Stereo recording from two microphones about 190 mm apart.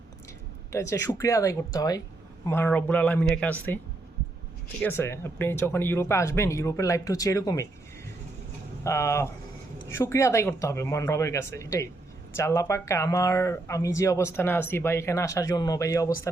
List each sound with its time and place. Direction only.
0.7 s speech: 15° left (ahead or behind)
4.8 s speech: 10° left (ahead or behind)
8.8 s speech: 15° left (ahead or behind)